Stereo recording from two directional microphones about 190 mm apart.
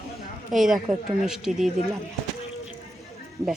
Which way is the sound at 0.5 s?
Centre (ahead or behind).